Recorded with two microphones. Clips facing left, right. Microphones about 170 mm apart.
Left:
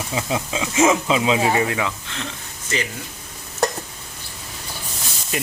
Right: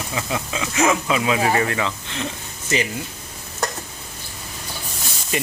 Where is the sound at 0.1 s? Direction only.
20° left (ahead or behind).